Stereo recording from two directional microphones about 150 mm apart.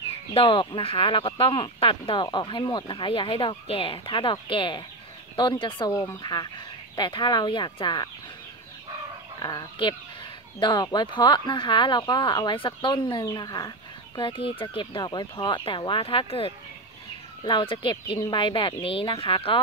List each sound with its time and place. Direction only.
0.3 s speech: 35° left (ahead or behind)
9.4 s speech: 25° left (ahead or behind)